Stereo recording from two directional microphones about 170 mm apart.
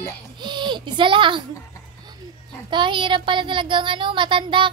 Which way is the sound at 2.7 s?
30° right (ahead or behind).